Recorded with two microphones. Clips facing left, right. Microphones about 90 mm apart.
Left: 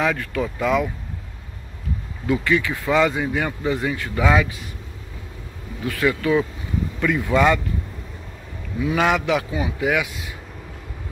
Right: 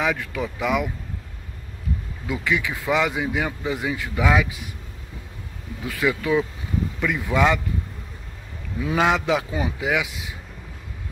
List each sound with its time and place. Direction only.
0.0 s speech: 5° right (ahead or behind)
2.2 s speech: 10° right (ahead or behind)
5.9 s speech: 15° right (ahead or behind)
8.8 s a man's voice: 20° right (ahead or behind)